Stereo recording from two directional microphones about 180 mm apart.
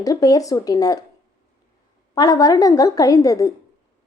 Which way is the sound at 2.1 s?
20° left (ahead or behind).